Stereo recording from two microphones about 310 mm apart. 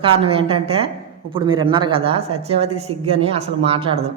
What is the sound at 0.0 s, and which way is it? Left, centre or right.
A man's voice, centre.